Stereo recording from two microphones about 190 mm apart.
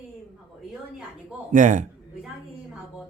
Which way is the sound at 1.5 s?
45° right (ahead or behind).